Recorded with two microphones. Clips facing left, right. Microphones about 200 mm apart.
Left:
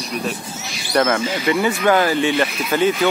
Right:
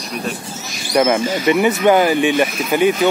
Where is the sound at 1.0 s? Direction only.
20° right (ahead or behind).